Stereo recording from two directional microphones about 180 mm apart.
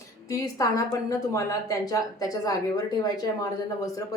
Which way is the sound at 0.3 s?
20° left (ahead or behind).